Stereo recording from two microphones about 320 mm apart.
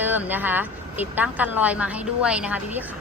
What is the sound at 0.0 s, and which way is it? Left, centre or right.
A woman's voice, centre.